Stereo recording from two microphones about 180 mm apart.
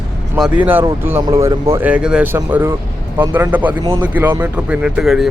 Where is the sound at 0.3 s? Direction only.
5° right (ahead or behind).